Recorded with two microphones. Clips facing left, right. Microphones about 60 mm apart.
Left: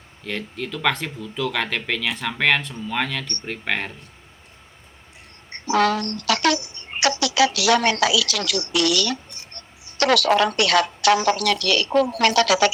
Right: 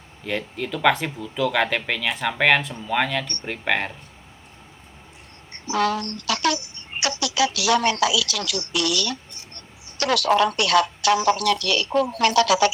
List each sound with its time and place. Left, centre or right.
0.3 s speech: centre
5.5 s a woman's voice: left